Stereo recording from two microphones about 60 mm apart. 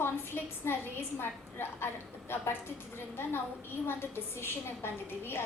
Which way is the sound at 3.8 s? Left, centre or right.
Left.